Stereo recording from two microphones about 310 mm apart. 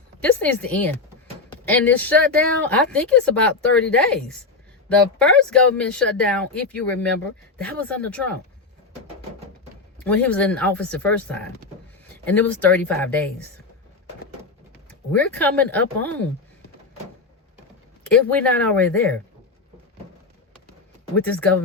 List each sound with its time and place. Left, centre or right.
0.2 s speech: centre
10.0 s speech: centre
15.1 s speech: centre
18.1 s speech: centre
21.2 s speech: centre